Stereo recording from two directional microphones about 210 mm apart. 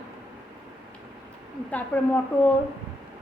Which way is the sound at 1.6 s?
10° left (ahead or behind).